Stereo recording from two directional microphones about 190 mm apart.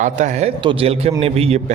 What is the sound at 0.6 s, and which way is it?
Speech, 30° right (ahead or behind).